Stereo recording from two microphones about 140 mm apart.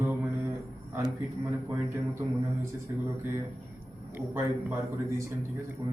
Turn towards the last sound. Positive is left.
turn(degrees=-15)  # may be behind; listen again after turning